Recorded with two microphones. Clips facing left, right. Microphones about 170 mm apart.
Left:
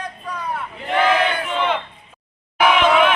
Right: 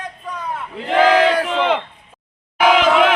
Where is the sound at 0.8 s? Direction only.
90° right.